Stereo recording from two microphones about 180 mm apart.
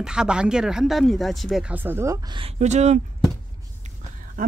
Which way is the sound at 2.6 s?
40° right (ahead or behind).